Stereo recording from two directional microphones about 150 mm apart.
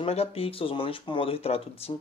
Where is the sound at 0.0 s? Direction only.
40° left (ahead or behind).